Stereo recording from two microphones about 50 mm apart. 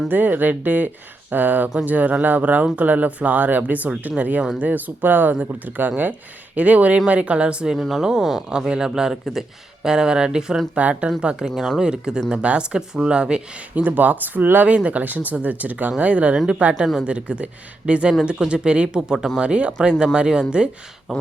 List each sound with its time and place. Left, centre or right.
0.1 s speech: right
7.8 s speech: centre
10.8 s speech: right
11.4 s speech: centre
11.8 s speech: centre
13.7 s speech: right; by 19.3 s centre
19.4 s speech: right